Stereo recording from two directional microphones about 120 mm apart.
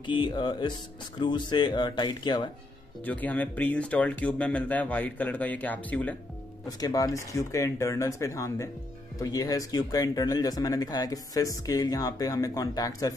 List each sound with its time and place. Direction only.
0.0 s speech: 40° left (ahead or behind)
3.1 s speech: 15° left (ahead or behind)
6.8 s speech: 30° left (ahead or behind)